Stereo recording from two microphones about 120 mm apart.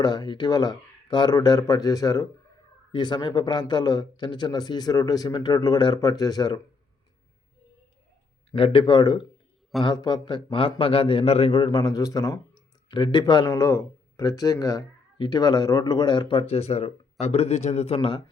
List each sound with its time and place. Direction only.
0.0 s a man's voice: 35° left (ahead or behind)
2.9 s a man's voice: 40° left (ahead or behind)
8.5 s a man's voice: 50° left (ahead or behind)